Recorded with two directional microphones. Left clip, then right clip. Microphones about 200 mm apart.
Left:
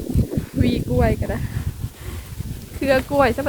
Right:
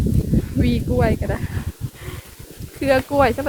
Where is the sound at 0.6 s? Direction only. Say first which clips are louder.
Even; 15° right (ahead or behind).